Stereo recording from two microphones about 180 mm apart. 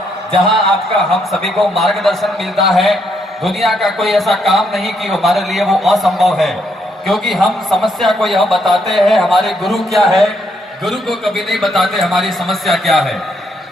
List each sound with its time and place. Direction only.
1.1 s a man's voice: centre (ahead or behind)